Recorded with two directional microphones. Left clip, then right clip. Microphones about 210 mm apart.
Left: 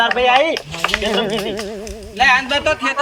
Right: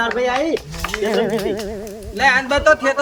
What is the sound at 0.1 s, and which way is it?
Speech, 35° left (ahead or behind).